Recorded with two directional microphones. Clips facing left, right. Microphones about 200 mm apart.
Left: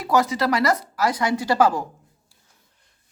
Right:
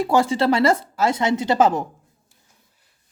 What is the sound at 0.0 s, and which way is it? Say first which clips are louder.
Speech: right 3 dB; 30° right (ahead or behind).